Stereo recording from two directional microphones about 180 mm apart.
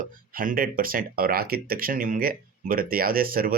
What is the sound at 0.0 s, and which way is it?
Speech, 50° right (ahead or behind).